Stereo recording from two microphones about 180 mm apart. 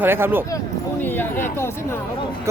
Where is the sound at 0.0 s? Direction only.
10° right (ahead or behind).